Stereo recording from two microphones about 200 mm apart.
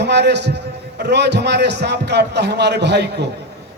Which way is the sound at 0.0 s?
60° right (ahead or behind).